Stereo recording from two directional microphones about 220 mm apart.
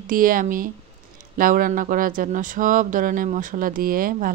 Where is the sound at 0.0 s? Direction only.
40° right (ahead or behind).